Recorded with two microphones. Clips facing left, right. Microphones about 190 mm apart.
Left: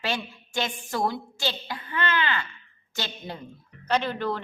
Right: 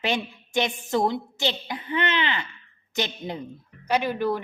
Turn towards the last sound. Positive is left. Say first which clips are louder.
# right 2 dB
turn(degrees=-10)  # may be behind; listen again after turning